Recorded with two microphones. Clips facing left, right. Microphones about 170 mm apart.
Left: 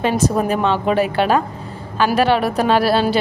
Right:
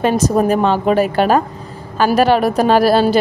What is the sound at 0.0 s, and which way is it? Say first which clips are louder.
A woman's voice: right 3 dB; 40° right (ahead or behind).